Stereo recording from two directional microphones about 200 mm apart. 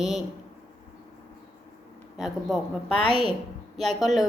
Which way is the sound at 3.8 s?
Centre (ahead or behind).